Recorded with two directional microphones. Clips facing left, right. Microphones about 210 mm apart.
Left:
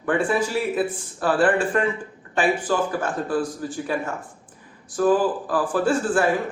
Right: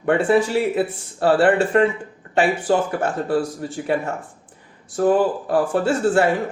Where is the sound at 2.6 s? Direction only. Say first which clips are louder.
Right 4 dB; 25° right (ahead or behind).